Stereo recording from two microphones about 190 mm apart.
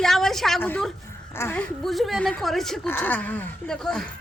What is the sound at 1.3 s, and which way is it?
Speech, 10° left (ahead or behind).